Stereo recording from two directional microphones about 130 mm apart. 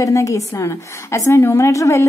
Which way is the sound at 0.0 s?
25° left (ahead or behind).